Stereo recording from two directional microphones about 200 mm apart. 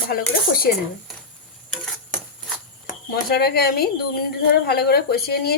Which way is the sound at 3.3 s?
50° left (ahead or behind).